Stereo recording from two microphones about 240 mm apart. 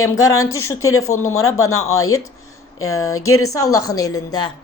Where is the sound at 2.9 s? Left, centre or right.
Centre.